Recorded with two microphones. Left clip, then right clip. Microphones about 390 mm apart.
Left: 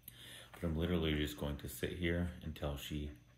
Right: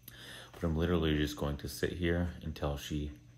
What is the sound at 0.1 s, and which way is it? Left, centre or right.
Speech, centre.